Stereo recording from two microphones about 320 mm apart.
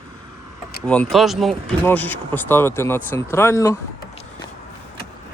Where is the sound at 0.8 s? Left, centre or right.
Centre.